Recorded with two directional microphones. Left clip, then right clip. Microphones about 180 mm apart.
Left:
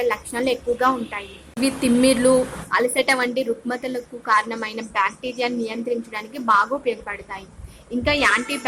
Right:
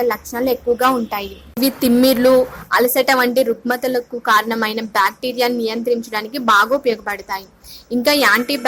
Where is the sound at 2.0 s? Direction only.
20° right (ahead or behind).